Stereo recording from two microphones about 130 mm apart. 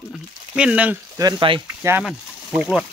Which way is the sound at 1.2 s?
35° right (ahead or behind).